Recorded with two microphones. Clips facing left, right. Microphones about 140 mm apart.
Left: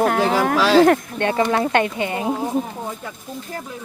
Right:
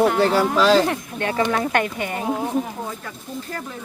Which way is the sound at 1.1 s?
30° left (ahead or behind).